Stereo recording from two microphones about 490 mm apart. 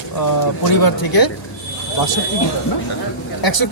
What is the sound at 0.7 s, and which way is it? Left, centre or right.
Speech, left.